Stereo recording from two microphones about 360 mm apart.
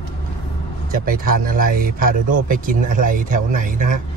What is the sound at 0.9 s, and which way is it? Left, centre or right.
Speech, right.